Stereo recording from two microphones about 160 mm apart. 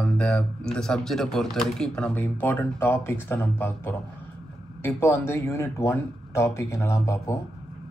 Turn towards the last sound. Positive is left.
turn(degrees=20)  # may be behind; listen again after turning